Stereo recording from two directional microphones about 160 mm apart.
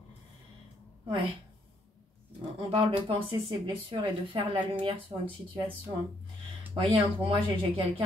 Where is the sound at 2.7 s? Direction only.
30° right (ahead or behind).